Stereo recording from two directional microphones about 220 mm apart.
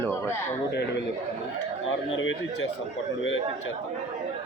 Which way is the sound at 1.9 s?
60° left (ahead or behind).